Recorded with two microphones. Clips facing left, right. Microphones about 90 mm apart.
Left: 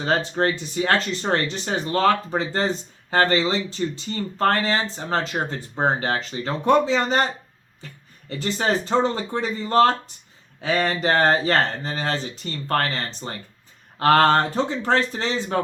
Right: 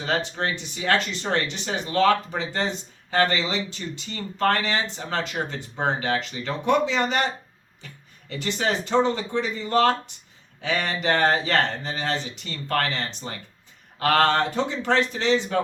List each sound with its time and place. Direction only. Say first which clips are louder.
0.0 s speech: left 4 dB; 40° left (ahead or behind)
8.3 s speech: left 3 dB; 40° left (ahead or behind)